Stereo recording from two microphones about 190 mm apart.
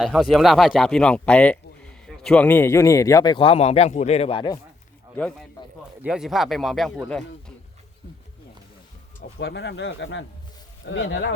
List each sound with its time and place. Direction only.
0.0 s a man's voice: centre (ahead or behind); by 4.6 s 25° left (ahead or behind)
6.0 s speech: 5° right (ahead or behind)
9.4 s speech: 65° left (ahead or behind); by 11.3 s 80° left